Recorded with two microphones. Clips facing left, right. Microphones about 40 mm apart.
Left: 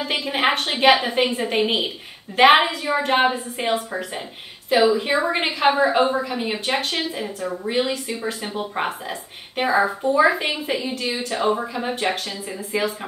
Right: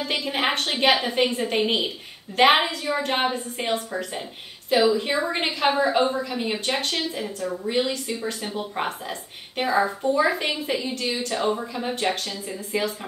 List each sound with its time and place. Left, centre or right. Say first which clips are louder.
0.0 s a woman's voice: left 3 dB; centre